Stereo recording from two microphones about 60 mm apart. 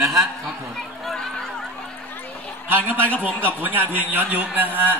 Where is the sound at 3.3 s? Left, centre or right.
Left.